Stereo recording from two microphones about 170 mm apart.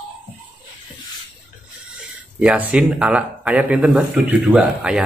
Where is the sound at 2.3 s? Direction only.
5° right (ahead or behind).